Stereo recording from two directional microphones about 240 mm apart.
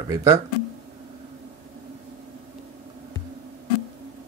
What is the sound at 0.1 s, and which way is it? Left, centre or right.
Speech, centre.